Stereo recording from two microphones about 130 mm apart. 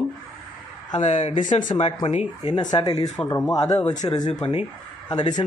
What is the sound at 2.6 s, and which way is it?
Speech, 35° left (ahead or behind).